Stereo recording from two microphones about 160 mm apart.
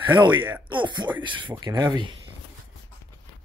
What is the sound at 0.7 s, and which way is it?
Speech, 30° right (ahead or behind).